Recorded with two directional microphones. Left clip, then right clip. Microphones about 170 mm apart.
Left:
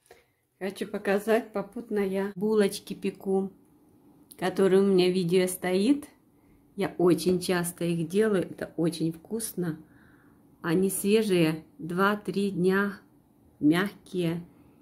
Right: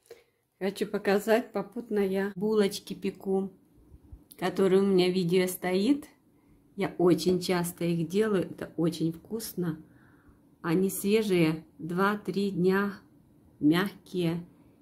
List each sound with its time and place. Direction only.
0.1 s speech: 20° right (ahead or behind)
2.2 s speech: centre (ahead or behind)